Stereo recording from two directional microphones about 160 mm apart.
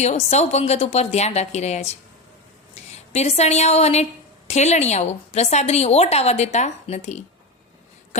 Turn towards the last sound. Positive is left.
turn(degrees=45)  # may be behind; listen again after turning